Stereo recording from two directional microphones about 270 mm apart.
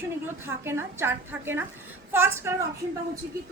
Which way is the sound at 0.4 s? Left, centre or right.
Centre.